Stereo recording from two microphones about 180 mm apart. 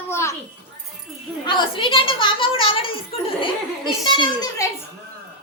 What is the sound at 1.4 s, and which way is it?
A woman's voice, 30° left (ahead or behind).